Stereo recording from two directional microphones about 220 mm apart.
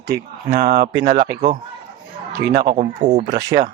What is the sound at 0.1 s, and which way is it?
Speech, 45° right (ahead or behind).